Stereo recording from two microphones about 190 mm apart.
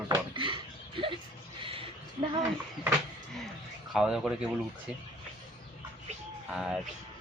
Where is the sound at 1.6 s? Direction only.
25° right (ahead or behind).